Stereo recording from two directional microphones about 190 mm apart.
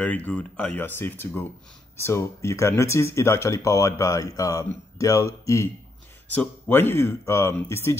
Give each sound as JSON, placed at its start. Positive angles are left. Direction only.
{"t": 0.0, "sound": "speech", "side_deg": 10}